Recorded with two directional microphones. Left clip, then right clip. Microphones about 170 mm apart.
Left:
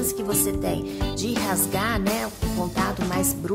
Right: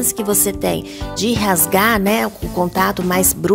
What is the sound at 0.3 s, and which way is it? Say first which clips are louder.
Speech: right 9 dB; 50° right (ahead or behind).